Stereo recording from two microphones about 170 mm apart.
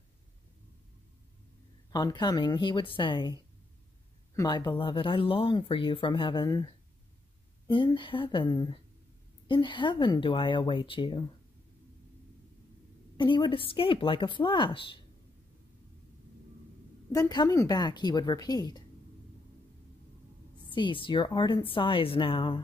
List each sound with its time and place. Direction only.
1.9 s speech: 25° left (ahead or behind)
4.4 s speech: 20° left (ahead or behind)
13.2 s speech: 30° left (ahead or behind)
17.1 s speech: 20° left (ahead or behind)
20.7 s speech: 30° left (ahead or behind)